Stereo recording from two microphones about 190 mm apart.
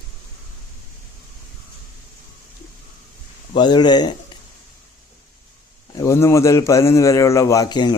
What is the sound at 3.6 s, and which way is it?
Speech, 20° left (ahead or behind).